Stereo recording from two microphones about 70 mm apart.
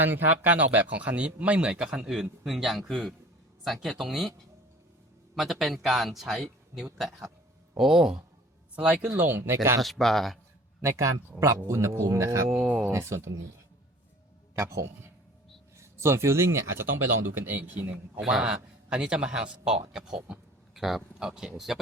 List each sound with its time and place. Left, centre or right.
0.0 s a man's voice: right; by 4.3 s centre
5.3 s speech: centre
8.7 s speech: right
9.1 s speech: right
9.8 s speech: centre
10.8 s speech: right
12.5 s a man's voice: right
12.9 s speech: right
14.5 s speech: right
17.3 s a man's voice: right
17.9 s speech: centre
18.4 s speech: centre